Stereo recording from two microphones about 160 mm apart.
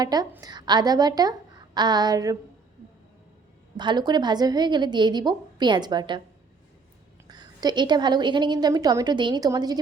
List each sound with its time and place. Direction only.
0.0 s a woman's voice: 25° right (ahead or behind)
3.8 s a woman's voice: 25° right (ahead or behind)
7.3 s a woman's voice: 25° right (ahead or behind)